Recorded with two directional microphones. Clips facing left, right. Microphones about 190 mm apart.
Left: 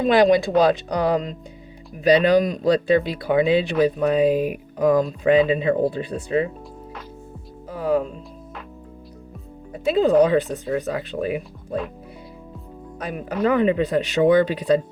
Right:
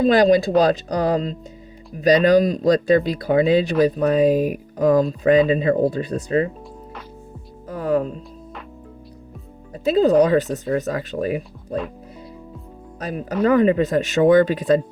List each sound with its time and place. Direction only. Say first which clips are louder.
0.0 s speech: right 1 dB; 35° right (ahead or behind)
7.7 s music: right 1 dB; 45° right (ahead or behind)
9.7 s speech: right 1 dB; 40° right (ahead or behind)
13.0 s speech: right 2 dB; 35° right (ahead or behind)